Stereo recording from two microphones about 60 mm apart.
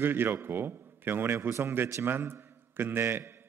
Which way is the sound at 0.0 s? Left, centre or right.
Right.